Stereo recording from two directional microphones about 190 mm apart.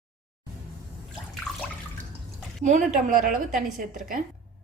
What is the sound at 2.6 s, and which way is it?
A woman's voice, 40° right (ahead or behind).